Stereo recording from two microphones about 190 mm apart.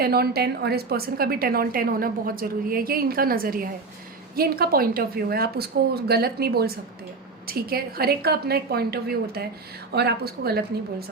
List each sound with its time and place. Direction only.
0.0 s a woman's voice: 55° right (ahead or behind)